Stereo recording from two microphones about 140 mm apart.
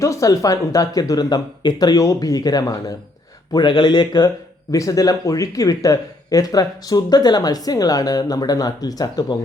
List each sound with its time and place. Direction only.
0.0 s speech: 25° left (ahead or behind)